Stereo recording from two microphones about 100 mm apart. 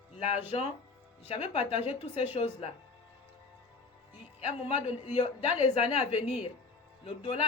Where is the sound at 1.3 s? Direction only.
65° left (ahead or behind).